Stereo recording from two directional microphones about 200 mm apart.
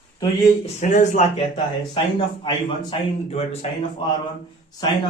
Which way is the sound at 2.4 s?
25° left (ahead or behind).